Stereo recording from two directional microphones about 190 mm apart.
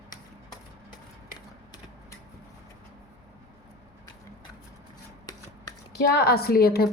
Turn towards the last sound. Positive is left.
turn(degrees=55)  # may be behind; listen again after turning